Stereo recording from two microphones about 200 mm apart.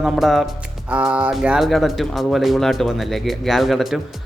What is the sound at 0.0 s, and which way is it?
Speech, centre (ahead or behind).